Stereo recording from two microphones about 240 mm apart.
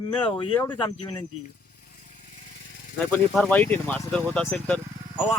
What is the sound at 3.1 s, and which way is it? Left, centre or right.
Speech, centre.